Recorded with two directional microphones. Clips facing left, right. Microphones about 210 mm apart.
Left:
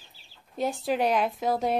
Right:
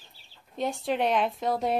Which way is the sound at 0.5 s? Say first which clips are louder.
Left 1 dB; centre (ahead or behind).